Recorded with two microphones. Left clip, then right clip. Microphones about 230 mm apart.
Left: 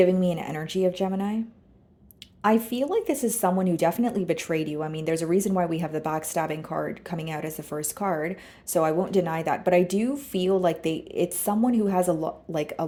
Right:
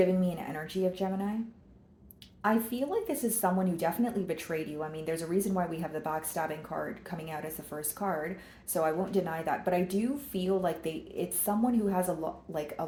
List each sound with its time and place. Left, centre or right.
0.0 s speech: left
2.4 s speech: left